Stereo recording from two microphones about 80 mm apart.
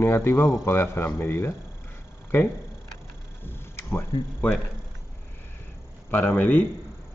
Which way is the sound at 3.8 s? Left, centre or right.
Left.